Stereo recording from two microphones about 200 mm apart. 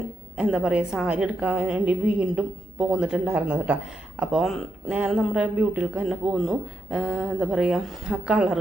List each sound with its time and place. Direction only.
0.3 s speech: 5° right (ahead or behind)